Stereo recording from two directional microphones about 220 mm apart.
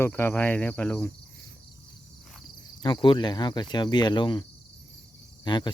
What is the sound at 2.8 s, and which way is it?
Speech, 20° left (ahead or behind).